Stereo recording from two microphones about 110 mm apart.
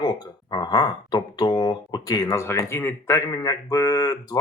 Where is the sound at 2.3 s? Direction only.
25° left (ahead or behind).